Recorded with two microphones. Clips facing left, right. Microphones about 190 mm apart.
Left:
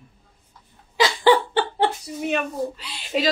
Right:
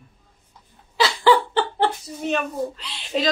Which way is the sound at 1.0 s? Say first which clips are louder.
Even; 15° left (ahead or behind).